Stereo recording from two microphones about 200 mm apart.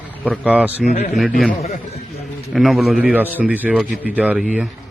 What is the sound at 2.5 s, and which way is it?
A man's voice, centre (ahead or behind).